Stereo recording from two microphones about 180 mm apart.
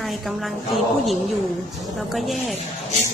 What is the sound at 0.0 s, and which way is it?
A woman's voice, centre (ahead or behind).